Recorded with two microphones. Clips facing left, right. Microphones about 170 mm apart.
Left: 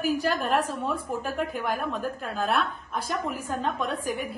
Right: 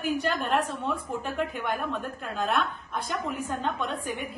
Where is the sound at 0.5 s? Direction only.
10° left (ahead or behind).